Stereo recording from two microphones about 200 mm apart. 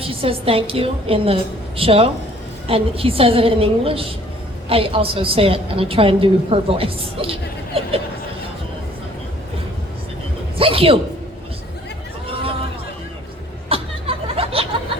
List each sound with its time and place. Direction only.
0.0 s a woman's voice: 30° right (ahead or behind)
10.6 s a woman's voice: 30° right (ahead or behind)
13.7 s a sound: 30° right (ahead or behind)